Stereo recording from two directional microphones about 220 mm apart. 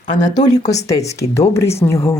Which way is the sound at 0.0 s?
35° left (ahead or behind).